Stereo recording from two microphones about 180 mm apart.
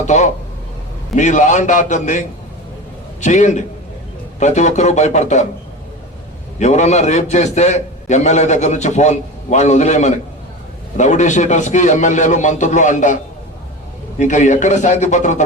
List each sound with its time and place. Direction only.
1.1 s a man's voice: 40° left (ahead or behind)
6.6 s a man's voice: 40° left (ahead or behind)
14.2 s a man's voice: 40° left (ahead or behind)